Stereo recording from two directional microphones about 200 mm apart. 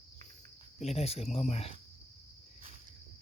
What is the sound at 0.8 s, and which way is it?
Speech, 30° left (ahead or behind).